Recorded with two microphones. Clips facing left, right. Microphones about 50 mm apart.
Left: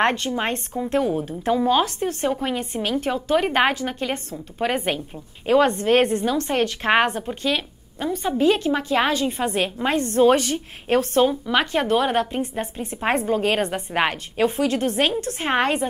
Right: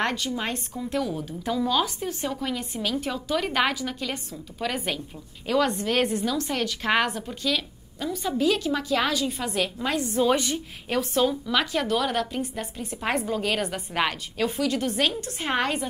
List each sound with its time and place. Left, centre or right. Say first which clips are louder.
0.0 s a woman's voice: left 6 dB; left